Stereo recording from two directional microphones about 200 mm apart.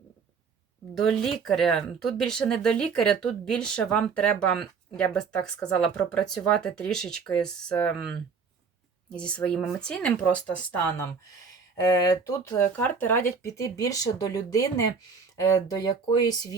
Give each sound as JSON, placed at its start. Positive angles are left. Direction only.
{"t": 0.9, "sound": "speech", "side_deg": 0}
{"t": 9.1, "sound": "speech", "side_deg": 5}
{"t": 11.8, "sound": "speech", "side_deg": 20}